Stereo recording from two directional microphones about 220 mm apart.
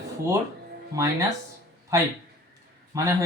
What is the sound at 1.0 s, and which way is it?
Speech, 15° right (ahead or behind).